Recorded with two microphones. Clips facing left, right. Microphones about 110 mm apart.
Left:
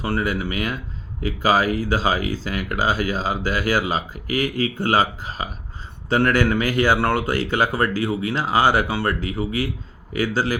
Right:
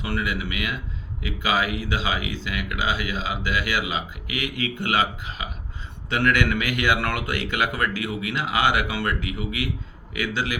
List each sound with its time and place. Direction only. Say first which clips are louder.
0.0 s speech: left 4 dB; 40° left (ahead or behind)